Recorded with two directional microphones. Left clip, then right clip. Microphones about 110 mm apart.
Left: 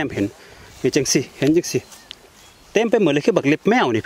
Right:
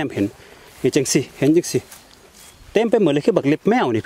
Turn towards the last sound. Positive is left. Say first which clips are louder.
# left 1 dB
turn(degrees=0)  # may be behind; listen again after turning